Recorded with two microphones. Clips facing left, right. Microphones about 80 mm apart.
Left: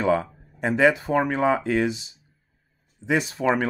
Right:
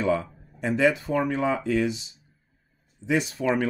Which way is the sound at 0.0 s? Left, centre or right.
Left.